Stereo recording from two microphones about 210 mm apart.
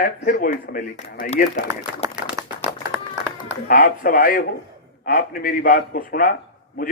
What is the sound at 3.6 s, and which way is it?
A man's voice, 45° left (ahead or behind).